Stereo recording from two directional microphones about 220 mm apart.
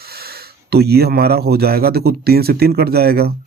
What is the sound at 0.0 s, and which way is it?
A man's voice, 45° right (ahead or behind).